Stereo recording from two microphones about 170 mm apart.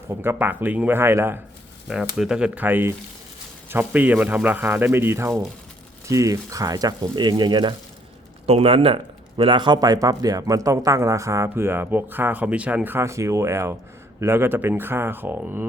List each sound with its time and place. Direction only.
0.1 s speech: 10° right (ahead or behind)